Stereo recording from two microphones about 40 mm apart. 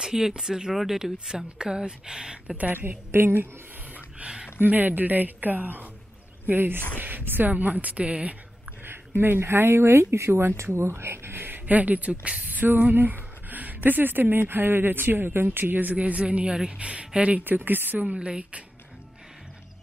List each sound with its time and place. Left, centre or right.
0.0 s speech: centre
2.7 s a woman's voice: right
3.1 s a woman's voice: right
4.2 s a sound: right
4.6 s speech: right
7.5 s a woman's voice: right
8.8 s speech: right
12.6 s a sound: right
13.8 s speech: right
17.4 s speech: right
18.1 s a woman's voice: right